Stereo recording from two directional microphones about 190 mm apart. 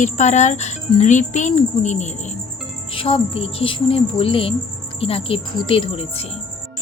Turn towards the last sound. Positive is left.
turn(degrees=30)  # may be behind; listen again after turning